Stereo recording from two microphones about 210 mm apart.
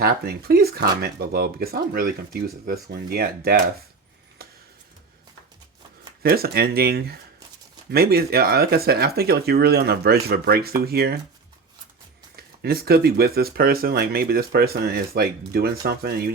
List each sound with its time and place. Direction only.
0.0 s speech: 45° right (ahead or behind)
6.2 s speech: 45° right (ahead or behind)
12.4 s speech: 45° right (ahead or behind)